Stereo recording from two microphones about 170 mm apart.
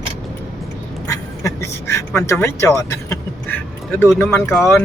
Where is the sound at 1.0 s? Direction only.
20° left (ahead or behind).